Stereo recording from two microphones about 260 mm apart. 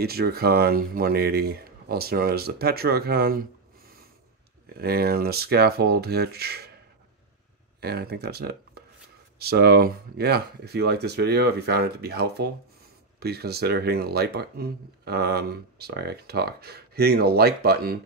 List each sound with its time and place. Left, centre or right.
0.0 s speech: right
4.7 s speech: right
7.8 s speech: right